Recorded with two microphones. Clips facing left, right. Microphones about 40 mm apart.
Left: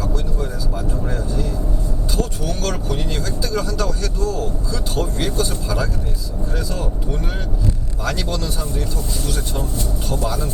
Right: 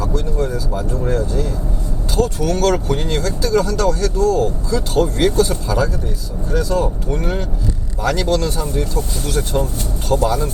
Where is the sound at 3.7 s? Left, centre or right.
Right.